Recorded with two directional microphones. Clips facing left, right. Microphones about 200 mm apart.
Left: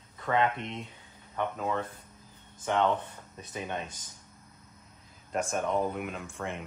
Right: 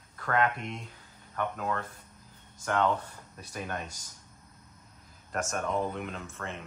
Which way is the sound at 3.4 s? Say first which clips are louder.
Left 1 dB; 20° left (ahead or behind).